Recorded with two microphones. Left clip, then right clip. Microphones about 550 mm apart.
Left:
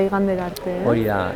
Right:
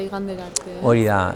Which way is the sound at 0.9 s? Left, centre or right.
Right.